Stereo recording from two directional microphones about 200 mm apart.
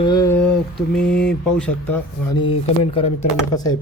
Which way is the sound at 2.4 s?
25° left (ahead or behind).